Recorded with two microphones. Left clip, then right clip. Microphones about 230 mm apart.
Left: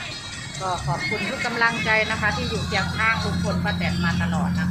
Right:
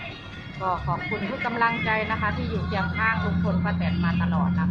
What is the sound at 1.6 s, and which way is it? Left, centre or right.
Speech, centre.